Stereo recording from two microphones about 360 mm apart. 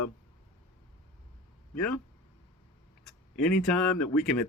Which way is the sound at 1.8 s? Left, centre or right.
Centre.